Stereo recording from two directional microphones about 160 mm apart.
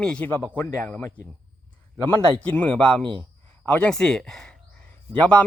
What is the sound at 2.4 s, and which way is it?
Speech, 10° left (ahead or behind).